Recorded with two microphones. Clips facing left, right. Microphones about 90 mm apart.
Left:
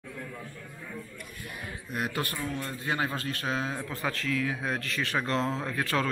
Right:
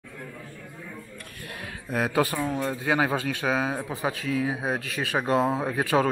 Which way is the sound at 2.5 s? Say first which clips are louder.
Right 7 dB; 20° right (ahead or behind).